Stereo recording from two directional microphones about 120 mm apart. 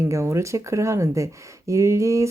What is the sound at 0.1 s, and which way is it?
Speech, 25° right (ahead or behind).